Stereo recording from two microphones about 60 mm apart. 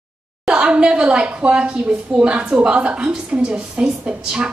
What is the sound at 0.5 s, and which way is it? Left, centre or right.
A woman's voice, centre.